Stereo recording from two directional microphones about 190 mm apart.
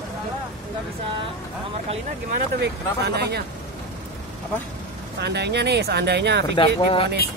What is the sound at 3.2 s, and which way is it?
Speech, 60° right (ahead or behind).